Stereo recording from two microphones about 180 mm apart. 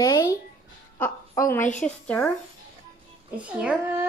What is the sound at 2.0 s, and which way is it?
Speech, 10° left (ahead or behind).